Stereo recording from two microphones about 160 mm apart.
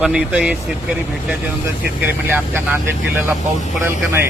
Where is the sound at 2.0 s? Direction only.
10° right (ahead or behind).